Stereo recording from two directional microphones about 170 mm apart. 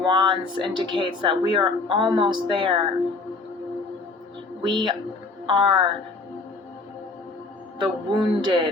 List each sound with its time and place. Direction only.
0.0 s speech: 25° right (ahead or behind)
4.6 s speech: 25° right (ahead or behind)
7.8 s speech: 25° right (ahead or behind)